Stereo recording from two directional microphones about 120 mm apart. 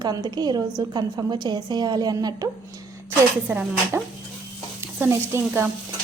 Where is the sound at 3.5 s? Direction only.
20° right (ahead or behind).